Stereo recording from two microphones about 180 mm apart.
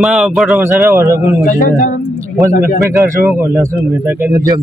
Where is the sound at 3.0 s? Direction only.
15° right (ahead or behind).